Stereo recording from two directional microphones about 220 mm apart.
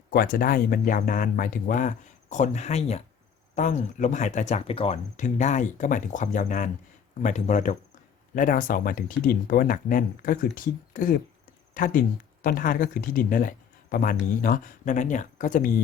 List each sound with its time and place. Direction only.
0.1 s speech: 45° left (ahead or behind)